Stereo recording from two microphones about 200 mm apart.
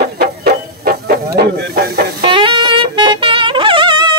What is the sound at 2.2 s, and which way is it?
Saxophone, 25° right (ahead or behind).